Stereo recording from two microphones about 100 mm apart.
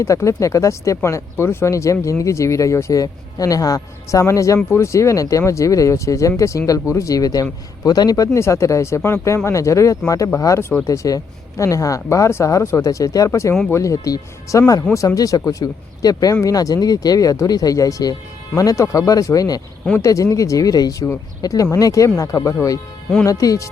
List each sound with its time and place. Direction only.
0.0 s speech: 30° left (ahead or behind)